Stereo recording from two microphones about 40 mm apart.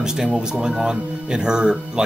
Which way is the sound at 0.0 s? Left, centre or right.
Centre.